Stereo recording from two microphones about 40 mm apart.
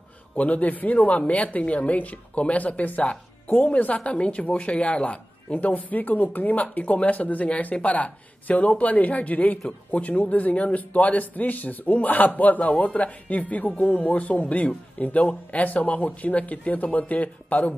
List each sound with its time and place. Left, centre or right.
0.4 s a woman's voice: left